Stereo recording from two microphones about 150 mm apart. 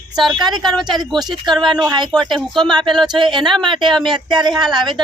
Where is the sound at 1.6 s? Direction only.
30° right (ahead or behind).